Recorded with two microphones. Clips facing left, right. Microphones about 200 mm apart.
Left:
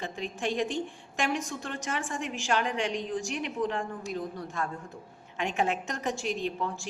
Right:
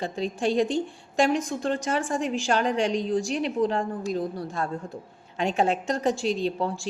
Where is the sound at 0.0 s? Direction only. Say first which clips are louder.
Right 6 dB; 35° right (ahead or behind).